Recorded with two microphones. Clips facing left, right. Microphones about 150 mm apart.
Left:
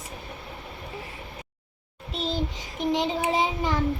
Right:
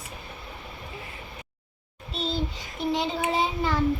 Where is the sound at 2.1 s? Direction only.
15° left (ahead or behind).